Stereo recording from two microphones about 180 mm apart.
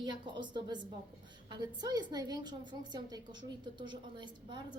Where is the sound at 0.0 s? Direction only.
25° right (ahead or behind).